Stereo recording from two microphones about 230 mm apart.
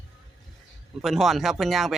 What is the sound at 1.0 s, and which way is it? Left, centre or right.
Speech, centre.